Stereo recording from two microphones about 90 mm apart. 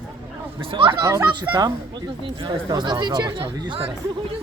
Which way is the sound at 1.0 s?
35° right (ahead or behind).